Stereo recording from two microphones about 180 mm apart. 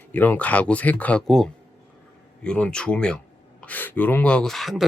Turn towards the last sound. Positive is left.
turn(degrees=0)  # may be behind; listen again after turning